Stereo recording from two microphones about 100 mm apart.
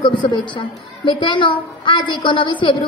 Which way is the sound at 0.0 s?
50° left (ahead or behind).